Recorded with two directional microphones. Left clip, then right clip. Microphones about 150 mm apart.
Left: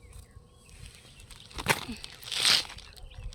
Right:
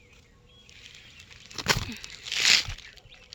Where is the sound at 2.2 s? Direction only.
15° left (ahead or behind).